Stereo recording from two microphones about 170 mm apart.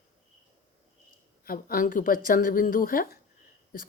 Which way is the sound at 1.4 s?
55° left (ahead or behind).